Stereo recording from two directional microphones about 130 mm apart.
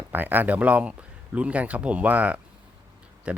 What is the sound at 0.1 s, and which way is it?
Speech, 15° right (ahead or behind).